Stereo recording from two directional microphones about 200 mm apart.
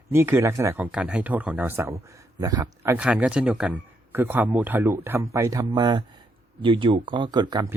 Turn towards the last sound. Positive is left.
turn(degrees=-20)  # may be behind; listen again after turning